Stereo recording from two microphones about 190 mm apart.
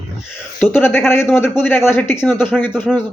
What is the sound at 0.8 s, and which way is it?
Speech, 10° left (ahead or behind).